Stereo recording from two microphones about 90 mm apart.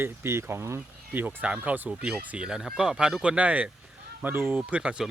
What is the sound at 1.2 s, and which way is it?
Speech, 15° right (ahead or behind).